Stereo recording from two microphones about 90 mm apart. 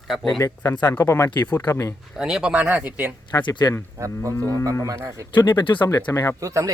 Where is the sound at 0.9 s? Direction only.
30° left (ahead or behind).